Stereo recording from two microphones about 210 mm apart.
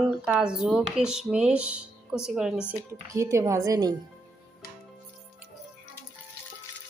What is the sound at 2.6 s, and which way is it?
A woman's voice, 15° right (ahead or behind).